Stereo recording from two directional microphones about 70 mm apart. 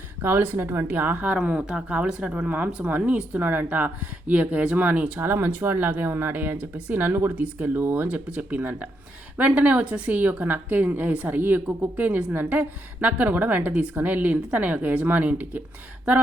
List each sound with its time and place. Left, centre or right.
0.2 s a woman's voice: right